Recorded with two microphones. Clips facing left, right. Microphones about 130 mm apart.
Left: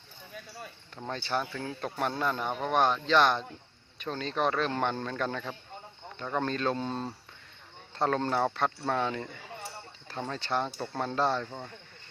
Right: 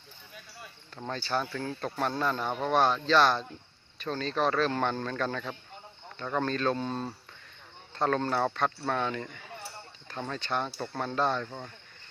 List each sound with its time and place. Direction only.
1.1 s speech: 20° left (ahead or behind)
10.3 s speech: 25° left (ahead or behind)